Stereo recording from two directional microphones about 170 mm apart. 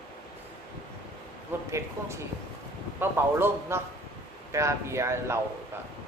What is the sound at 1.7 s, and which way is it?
A man's voice, 15° right (ahead or behind).